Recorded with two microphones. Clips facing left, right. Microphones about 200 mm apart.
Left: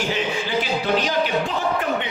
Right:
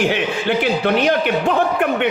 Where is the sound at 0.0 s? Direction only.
65° right (ahead or behind).